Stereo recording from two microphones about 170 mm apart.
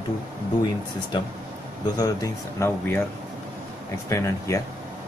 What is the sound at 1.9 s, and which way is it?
Speech, 20° left (ahead or behind).